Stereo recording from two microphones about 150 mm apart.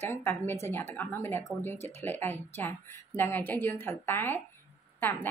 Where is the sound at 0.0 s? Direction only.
15° left (ahead or behind).